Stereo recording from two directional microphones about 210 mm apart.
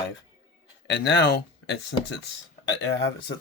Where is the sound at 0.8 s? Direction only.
55° left (ahead or behind).